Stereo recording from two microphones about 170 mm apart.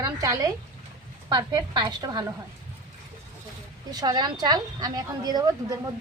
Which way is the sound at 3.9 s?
25° right (ahead or behind).